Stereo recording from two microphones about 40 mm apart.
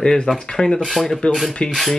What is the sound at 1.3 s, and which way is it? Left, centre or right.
Speech, left.